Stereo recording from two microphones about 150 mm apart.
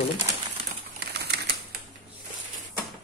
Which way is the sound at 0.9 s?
90° right.